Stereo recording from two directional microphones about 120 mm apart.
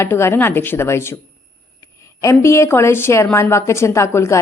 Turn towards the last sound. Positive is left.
turn(degrees=25)  # may be behind; listen again after turning